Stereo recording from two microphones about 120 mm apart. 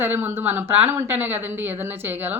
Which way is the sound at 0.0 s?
20° right (ahead or behind).